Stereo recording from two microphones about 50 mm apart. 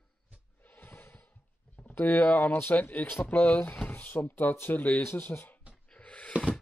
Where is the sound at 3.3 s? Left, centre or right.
Left.